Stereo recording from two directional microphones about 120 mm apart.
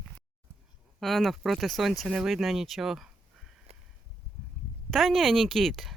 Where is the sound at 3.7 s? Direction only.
55° right (ahead or behind).